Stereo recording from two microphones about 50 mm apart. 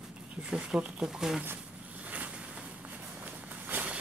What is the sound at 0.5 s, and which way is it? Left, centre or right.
Speech, centre.